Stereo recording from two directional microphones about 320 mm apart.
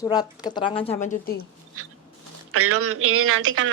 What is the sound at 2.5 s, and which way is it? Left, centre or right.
Speech, right.